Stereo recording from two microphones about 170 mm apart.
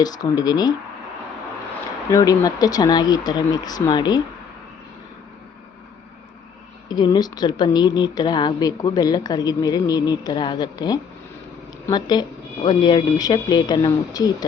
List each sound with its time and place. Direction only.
0.0 s a woman's voice: 25° left (ahead or behind)
2.0 s a woman's voice: 20° left (ahead or behind)
6.8 s a woman's voice: 25° left (ahead or behind)